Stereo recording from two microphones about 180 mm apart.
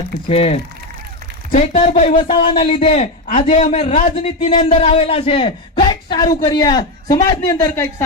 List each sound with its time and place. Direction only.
0.3 s speech: 35° left (ahead or behind)
3.2 s a man's voice: 45° left (ahead or behind); by 8.0 s 15° left (ahead or behind)